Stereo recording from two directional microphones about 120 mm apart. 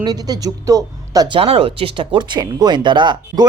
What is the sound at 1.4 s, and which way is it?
Speech, 55° right (ahead or behind).